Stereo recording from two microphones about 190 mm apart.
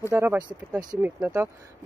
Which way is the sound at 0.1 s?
10° right (ahead or behind).